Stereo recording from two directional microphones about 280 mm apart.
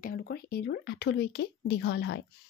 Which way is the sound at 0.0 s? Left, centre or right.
Left.